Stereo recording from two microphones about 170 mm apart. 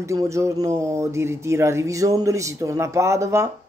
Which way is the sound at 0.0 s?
20° right (ahead or behind).